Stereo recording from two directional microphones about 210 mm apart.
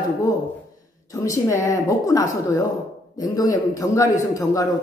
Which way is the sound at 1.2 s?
15° left (ahead or behind).